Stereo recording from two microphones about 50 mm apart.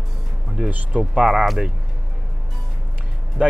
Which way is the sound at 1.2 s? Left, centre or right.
Centre.